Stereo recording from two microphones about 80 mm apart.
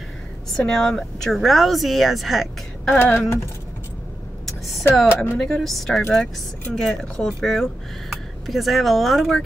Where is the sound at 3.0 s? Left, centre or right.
Left.